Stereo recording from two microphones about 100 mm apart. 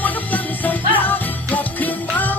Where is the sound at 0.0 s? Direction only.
15° left (ahead or behind).